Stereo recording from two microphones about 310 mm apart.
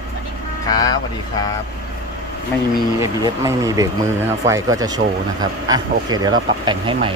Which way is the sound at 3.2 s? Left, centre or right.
Centre.